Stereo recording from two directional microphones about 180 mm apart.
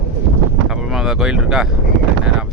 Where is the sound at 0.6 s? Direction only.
5° right (ahead or behind).